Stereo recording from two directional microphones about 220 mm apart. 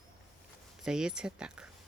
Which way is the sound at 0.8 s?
5° right (ahead or behind).